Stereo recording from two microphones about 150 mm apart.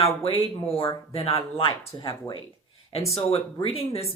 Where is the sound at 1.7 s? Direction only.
30° left (ahead or behind).